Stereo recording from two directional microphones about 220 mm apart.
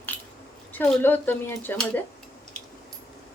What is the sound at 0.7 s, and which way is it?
A woman's voice, 10° left (ahead or behind).